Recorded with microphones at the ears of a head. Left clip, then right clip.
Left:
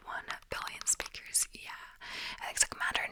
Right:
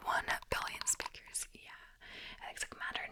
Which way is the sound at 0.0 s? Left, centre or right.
Right.